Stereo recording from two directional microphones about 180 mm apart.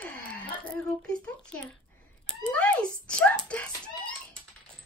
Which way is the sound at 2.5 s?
10° left (ahead or behind).